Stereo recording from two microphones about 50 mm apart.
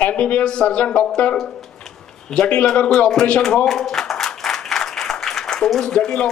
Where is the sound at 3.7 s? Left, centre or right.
Centre.